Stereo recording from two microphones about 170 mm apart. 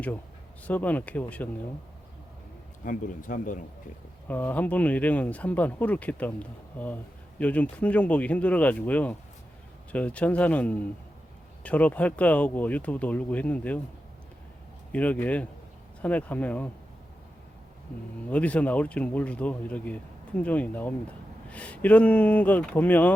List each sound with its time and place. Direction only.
0.7 s speech: 10° left (ahead or behind)
2.8 s speech: 50° left (ahead or behind)
4.3 s speech: 10° left (ahead or behind)
14.9 s speech: 10° left (ahead or behind)
18.3 s speech: 10° left (ahead or behind)